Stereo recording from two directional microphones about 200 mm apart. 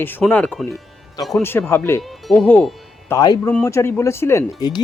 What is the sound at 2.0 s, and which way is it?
Speech, centre (ahead or behind).